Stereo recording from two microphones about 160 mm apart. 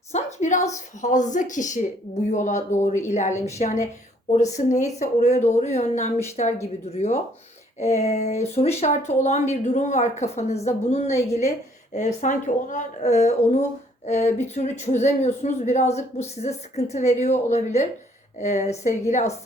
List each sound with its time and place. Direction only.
0.1 s speech: 45° left (ahead or behind)